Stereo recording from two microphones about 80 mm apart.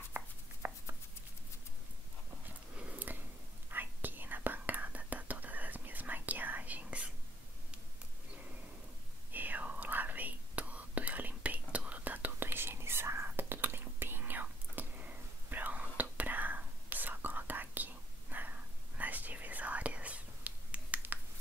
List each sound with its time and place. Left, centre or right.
0.1 s chopping: right
2.7 s a sound: centre
3.7 s whispering: right
9.3 s whispering: right